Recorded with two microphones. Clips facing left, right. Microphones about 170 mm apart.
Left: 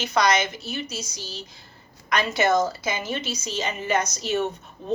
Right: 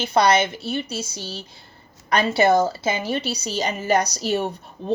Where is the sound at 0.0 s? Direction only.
30° right (ahead or behind).